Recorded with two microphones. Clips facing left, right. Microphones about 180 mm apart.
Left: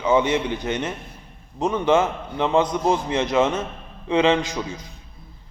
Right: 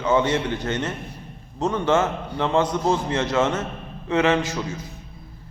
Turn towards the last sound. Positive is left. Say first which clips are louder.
# left 1 dB
turn(degrees=15)  # may be behind; listen again after turning